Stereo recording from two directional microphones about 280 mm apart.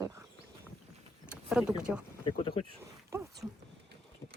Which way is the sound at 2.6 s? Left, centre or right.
Centre.